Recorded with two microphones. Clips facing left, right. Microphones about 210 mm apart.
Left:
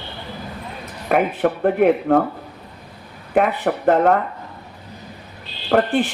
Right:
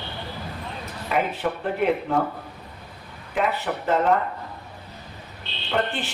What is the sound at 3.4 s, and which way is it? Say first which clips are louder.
Speech: left 7 dB; 55° left (ahead or behind).